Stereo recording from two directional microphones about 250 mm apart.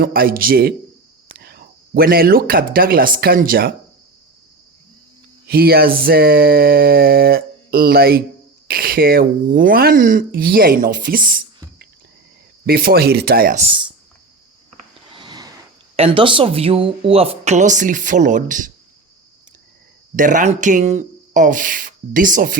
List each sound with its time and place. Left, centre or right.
0.0 s speech: right
5.5 s speech: right
15.1 s a sound: centre
16.0 s speech: right
20.1 s speech: right